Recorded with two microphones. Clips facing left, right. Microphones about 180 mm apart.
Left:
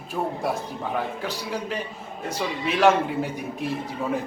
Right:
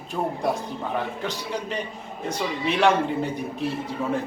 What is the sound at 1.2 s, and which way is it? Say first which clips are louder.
Speech: even; 5° left (ahead or behind).